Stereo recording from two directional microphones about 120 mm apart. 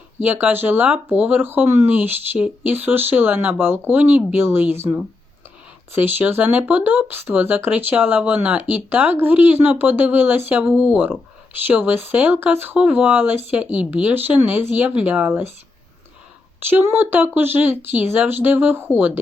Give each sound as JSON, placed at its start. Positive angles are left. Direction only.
{"t": 0.2, "sound": "speech", "side_deg": -15}
{"t": 16.6, "sound": "speech", "side_deg": -15}